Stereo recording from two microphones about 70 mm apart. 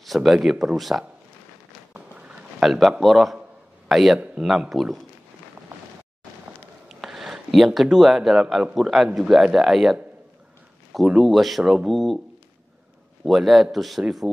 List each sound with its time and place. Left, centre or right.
0.0 s speech: centre
2.0 s a sound: centre
2.6 s speech: centre
6.9 s speech: centre
13.2 s speech: centre